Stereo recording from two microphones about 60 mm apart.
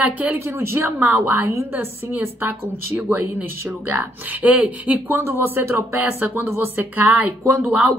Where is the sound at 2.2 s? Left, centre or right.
Right.